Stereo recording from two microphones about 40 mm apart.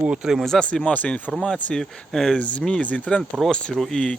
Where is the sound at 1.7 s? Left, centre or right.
Centre.